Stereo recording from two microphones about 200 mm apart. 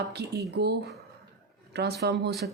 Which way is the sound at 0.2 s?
55° right (ahead or behind).